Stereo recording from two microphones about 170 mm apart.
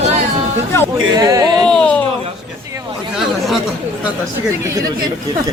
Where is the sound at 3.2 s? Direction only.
Centre (ahead or behind).